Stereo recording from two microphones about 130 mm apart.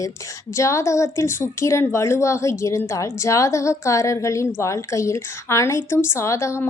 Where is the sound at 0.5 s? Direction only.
25° left (ahead or behind).